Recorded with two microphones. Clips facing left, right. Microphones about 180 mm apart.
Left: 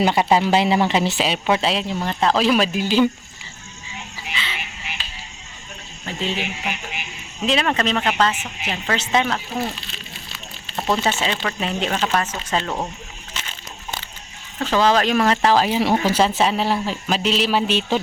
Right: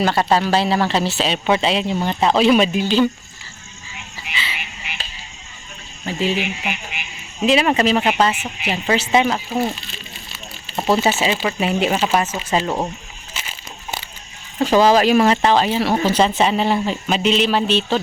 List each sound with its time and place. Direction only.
0.0 s a woman's voice: 15° left (ahead or behind)
2.8 s a woman's voice: 10° left (ahead or behind)
4.3 s frog: 35° left (ahead or behind)
6.1 s speech: 5° right (ahead or behind)
10.8 s speech: 5° right (ahead or behind)
13.3 s a sound: 10° right (ahead or behind)
14.6 s speech: 10° right (ahead or behind); by 15.8 s 5° left (ahead or behind)
15.8 s a woman's voice: 15° left (ahead or behind)
16.1 s speech: 5° left (ahead or behind)